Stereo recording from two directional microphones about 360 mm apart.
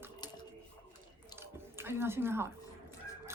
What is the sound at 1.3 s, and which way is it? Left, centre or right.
Drip, centre.